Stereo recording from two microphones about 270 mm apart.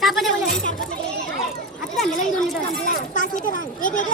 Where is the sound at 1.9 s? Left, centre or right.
Centre.